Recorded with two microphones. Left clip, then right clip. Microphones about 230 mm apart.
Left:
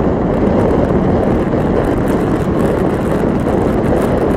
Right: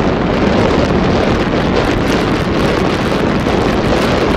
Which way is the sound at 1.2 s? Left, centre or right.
Left.